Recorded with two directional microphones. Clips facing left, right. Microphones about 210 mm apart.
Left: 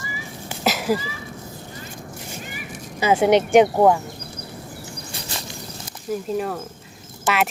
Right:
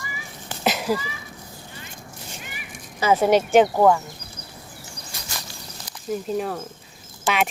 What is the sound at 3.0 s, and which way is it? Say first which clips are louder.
Speech: left 1 dB; 15° left (ahead or behind).